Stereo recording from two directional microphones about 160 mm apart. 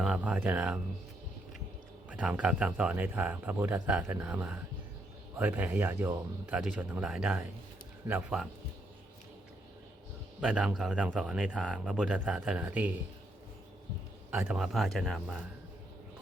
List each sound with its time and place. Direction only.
0.0 s speech: 5° right (ahead or behind)
2.0 s speech: 5° right (ahead or behind)
10.4 s speech: 5° right (ahead or behind)
14.3 s speech: 5° right (ahead or behind)